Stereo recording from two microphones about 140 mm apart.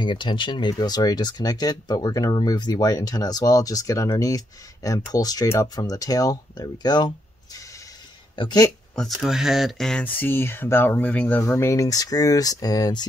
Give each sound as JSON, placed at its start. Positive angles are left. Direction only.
{"t": 0.0, "sound": "speech", "side_deg": 35}
{"t": 8.9, "sound": "speech", "side_deg": 0}